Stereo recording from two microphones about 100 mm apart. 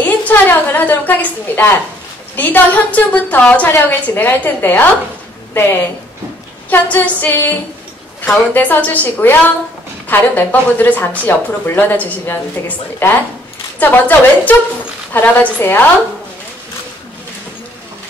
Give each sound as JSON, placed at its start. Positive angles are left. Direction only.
{"t": 0.0, "sound": "a sound", "side_deg": 20}
{"t": 2.3, "sound": "a woman's voice", "side_deg": 15}
{"t": 8.5, "sound": "a woman's voice", "side_deg": 15}